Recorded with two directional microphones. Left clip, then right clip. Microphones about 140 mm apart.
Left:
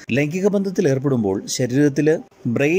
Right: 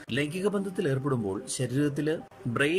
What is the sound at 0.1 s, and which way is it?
Speech, 40° left (ahead or behind).